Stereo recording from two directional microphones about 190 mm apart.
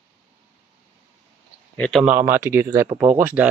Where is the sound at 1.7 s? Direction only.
5° left (ahead or behind).